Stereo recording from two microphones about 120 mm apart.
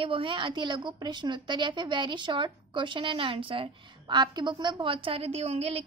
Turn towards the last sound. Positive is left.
turn(degrees=-55)  # may be behind; listen again after turning